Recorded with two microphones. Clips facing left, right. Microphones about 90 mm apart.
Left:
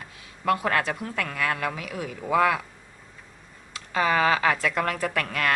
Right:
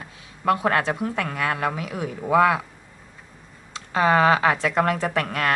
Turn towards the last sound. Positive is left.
turn(degrees=-30)  # may be behind; listen again after turning